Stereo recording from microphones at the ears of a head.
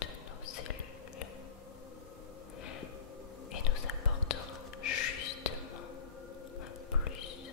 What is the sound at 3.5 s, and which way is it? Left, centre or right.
Whispering, left.